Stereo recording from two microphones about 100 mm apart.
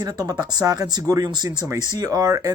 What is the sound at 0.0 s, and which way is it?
Speech, 40° right (ahead or behind).